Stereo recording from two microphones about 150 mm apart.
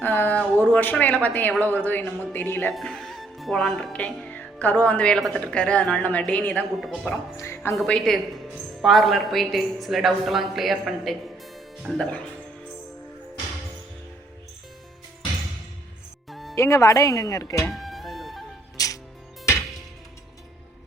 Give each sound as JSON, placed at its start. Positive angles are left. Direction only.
{"t": 0.0, "sound": "speech", "side_deg": 10}
{"t": 7.8, "sound": "a woman's voice", "side_deg": 5}
{"t": 16.3, "sound": "music", "side_deg": 0}
{"t": 16.6, "sound": "speech", "side_deg": 20}
{"t": 17.7, "sound": "music", "side_deg": 0}
{"t": 18.8, "sound": "music", "side_deg": 25}